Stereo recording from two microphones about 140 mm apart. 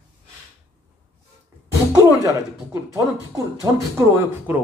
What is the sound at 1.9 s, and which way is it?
Speech, 25° right (ahead or behind).